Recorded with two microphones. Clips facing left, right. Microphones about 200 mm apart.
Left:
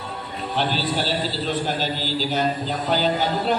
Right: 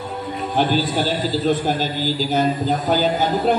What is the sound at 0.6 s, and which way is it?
A man's voice, 45° right (ahead or behind).